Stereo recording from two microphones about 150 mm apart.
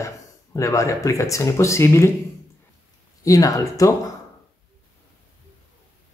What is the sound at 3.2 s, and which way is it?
Speech, 25° left (ahead or behind).